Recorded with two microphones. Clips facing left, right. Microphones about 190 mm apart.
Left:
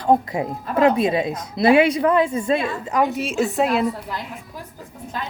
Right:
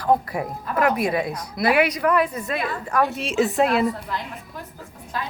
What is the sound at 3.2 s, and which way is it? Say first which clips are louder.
A woman's voice: even; centre (ahead or behind).